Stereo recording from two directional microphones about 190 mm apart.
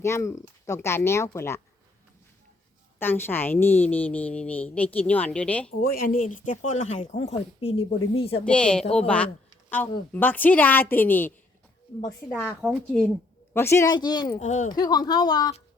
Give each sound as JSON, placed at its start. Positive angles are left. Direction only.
{"t": 0.0, "sound": "speech", "side_deg": 15}
{"t": 3.0, "sound": "speech", "side_deg": 10}
{"t": 5.8, "sound": "speech", "side_deg": 50}
{"t": 8.4, "sound": "speech", "side_deg": 5}
{"t": 12.6, "sound": "a woman's voice", "side_deg": 0}
{"t": 13.5, "sound": "speech", "side_deg": 10}
{"t": 14.3, "sound": "speech", "side_deg": 40}
{"t": 14.7, "sound": "speech", "side_deg": 20}